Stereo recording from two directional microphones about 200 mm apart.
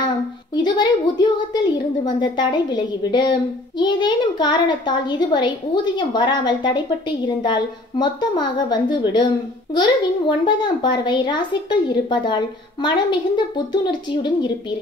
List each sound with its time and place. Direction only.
0.6 s a woman's voice: 20° left (ahead or behind)